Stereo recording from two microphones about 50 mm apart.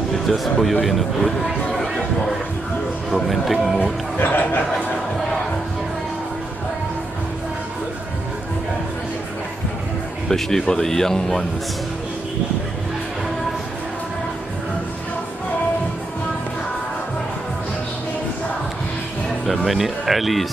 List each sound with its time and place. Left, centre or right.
0.3 s speech: centre
4.2 s speech: left
10.2 s speech: centre
19.4 s speech: centre